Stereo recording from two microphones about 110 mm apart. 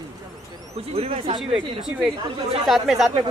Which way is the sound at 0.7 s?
65° right (ahead or behind).